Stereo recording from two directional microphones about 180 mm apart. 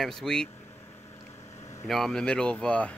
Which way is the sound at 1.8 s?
Centre (ahead or behind).